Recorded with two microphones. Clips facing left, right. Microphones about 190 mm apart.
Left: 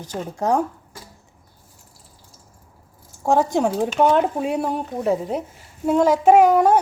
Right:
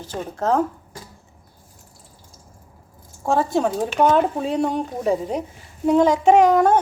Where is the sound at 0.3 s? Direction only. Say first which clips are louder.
Even; 15° left (ahead or behind).